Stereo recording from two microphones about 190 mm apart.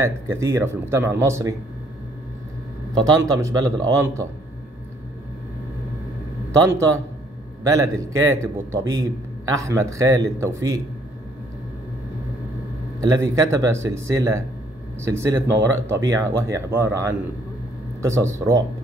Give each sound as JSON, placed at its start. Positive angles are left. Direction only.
{"t": 0.0, "sound": "speech", "side_deg": -15}
{"t": 2.9, "sound": "speech", "side_deg": -20}
{"t": 7.6, "sound": "speech", "side_deg": -15}
{"t": 13.0, "sound": "speech", "side_deg": -15}